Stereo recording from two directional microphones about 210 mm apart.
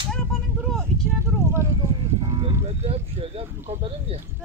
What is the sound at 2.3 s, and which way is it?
Speech, 25° right (ahead or behind).